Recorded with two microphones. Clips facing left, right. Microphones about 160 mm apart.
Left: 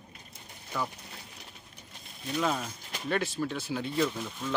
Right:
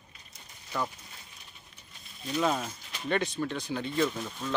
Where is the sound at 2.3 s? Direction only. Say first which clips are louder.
Right 2 dB; 5° right (ahead or behind).